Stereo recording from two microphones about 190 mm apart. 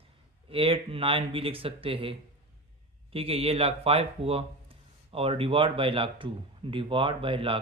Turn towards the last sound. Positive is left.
turn(degrees=-30)  # may be behind; listen again after turning